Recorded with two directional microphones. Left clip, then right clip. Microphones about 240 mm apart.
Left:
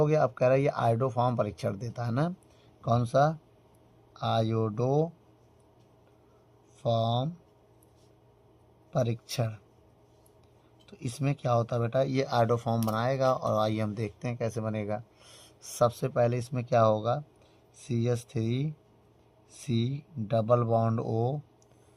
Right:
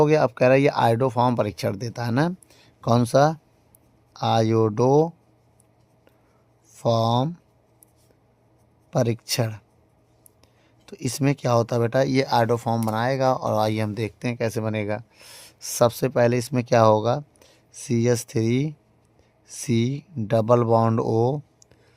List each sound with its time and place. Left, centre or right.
0.0 s speech: right
6.8 s speech: right
8.9 s speech: right
10.8 s speech: right